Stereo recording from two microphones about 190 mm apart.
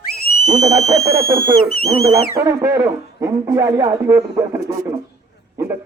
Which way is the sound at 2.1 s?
15° right (ahead or behind).